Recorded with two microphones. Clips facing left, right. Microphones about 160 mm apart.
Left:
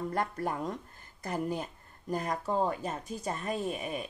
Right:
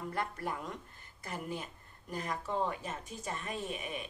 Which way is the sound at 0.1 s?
45° left (ahead or behind).